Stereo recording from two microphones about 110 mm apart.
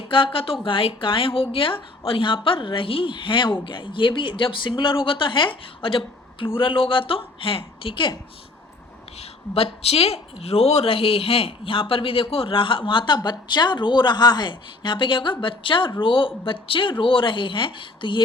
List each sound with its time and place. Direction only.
0.1 s speech: 55° left (ahead or behind)
9.6 s speech: 65° left (ahead or behind); by 18.2 s 50° left (ahead or behind)